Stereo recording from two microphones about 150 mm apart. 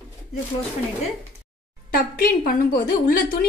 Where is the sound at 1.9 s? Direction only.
70° left (ahead or behind).